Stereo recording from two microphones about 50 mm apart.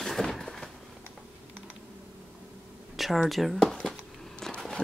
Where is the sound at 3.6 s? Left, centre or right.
Centre.